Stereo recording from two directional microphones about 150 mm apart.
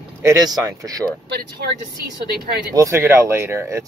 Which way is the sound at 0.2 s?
25° right (ahead or behind).